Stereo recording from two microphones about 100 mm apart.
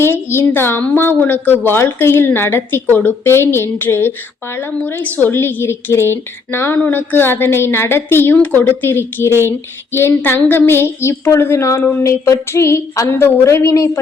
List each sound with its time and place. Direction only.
0.0 s a woman's voice: 25° left (ahead or behind)
9.3 s a sound: 25° right (ahead or behind)
9.9 s a woman's voice: 25° left (ahead or behind)
12.0 s a woman's voice: 30° left (ahead or behind)